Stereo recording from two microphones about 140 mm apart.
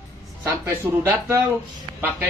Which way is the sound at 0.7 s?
15° right (ahead or behind).